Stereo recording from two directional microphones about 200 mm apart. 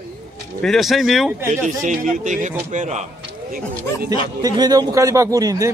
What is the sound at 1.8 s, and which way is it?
A man's voice, 40° right (ahead or behind).